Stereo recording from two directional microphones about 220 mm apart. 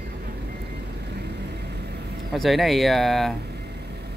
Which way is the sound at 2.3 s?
Centre (ahead or behind).